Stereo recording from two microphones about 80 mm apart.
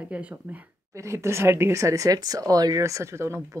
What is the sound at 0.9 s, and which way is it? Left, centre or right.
Speech, right.